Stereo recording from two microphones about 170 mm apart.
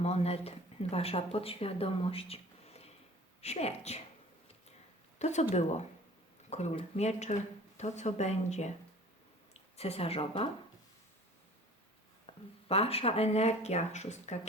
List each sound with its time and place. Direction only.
0.0 s speech: 35° left (ahead or behind)
5.2 s speech: 40° left (ahead or behind)
9.7 s speech: 35° left (ahead or behind)
12.2 s speech: 35° left (ahead or behind)